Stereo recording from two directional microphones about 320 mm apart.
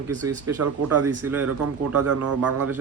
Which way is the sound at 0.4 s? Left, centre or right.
Right.